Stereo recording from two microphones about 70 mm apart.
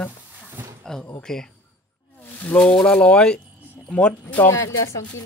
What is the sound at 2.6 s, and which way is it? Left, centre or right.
Speech, centre.